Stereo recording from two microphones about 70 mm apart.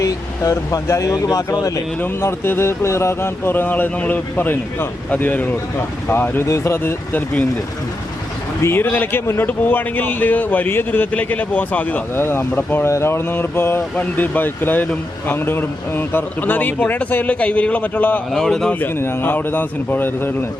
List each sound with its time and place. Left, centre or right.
0.0 s speech: left
2.0 s speech: left
6.4 s speech: left
8.6 s speech: left
18.3 s speech: centre
18.7 s speech: left